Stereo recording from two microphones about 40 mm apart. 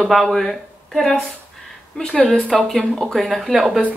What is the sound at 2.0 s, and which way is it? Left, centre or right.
Speech, left.